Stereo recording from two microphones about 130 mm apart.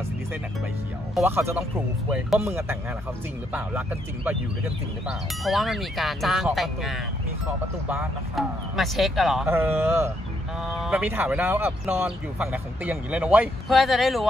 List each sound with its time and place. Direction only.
1.2 s speech: 20° right (ahead or behind)
2.0 s speech: 5° right (ahead or behind)
2.4 s speech: 20° right (ahead or behind)
5.0 s speech: centre (ahead or behind)
8.4 s speech: centre (ahead or behind)
9.5 s speech: 15° right (ahead or behind)
10.7 s speech: 5° right (ahead or behind)
13.7 s speech: centre (ahead or behind)